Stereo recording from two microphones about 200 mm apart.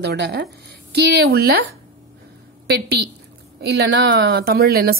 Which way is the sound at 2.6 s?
55° right (ahead or behind).